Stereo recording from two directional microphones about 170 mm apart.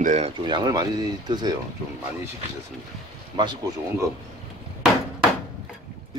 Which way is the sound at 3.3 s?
25° right (ahead or behind).